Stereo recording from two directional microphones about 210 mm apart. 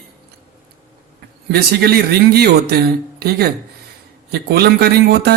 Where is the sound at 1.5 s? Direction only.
50° right (ahead or behind).